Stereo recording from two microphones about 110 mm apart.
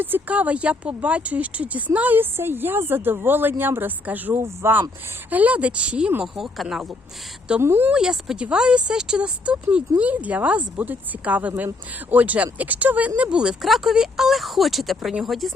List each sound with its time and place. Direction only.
0.0 s speech: 15° right (ahead or behind)
6.2 s speech: centre (ahead or behind)
7.6 s speech: 20° right (ahead or behind)
7.9 s speech: 5° right (ahead or behind)